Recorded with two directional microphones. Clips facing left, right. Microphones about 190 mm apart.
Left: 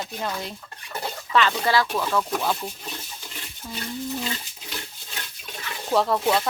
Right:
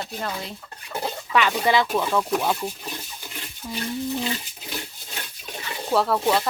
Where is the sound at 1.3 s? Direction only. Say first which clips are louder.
Right 1 dB; 15° right (ahead or behind).